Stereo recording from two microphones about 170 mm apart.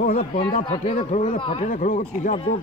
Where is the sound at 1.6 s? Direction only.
50° left (ahead or behind).